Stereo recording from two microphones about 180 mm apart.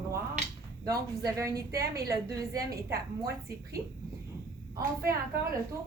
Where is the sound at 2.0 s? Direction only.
20° right (ahead or behind).